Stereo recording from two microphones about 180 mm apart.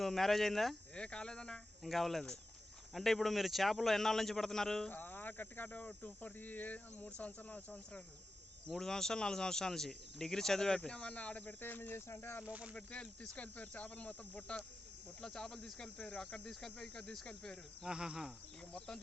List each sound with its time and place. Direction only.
0.0 s a man's voice: centre (ahead or behind)
12.5 s speech: 5° right (ahead or behind)
12.7 s a man's voice: 5° left (ahead or behind)